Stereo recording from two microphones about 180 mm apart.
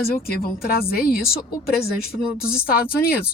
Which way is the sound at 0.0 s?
55° left (ahead or behind).